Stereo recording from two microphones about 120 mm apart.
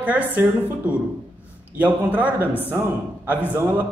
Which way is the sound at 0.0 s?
15° right (ahead or behind).